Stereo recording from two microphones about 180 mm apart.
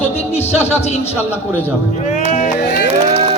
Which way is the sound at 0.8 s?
35° left (ahead or behind).